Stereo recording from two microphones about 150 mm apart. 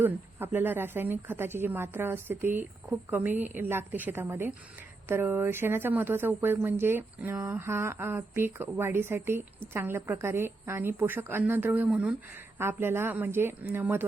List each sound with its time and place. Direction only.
0.0 s speech: 15° right (ahead or behind)